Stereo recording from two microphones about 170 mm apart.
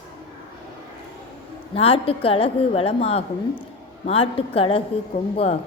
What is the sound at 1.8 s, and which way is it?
A woman's voice, 35° left (ahead or behind).